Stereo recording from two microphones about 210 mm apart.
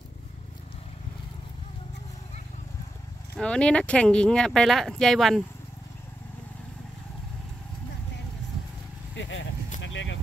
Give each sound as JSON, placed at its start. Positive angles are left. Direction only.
{"t": 3.3, "sound": "speech", "side_deg": 5}
{"t": 9.1, "sound": "vehicle", "side_deg": 60}